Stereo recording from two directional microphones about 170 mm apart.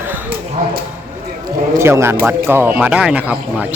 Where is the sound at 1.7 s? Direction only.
15° right (ahead or behind).